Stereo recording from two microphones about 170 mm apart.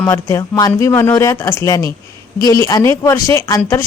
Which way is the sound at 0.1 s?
20° left (ahead or behind).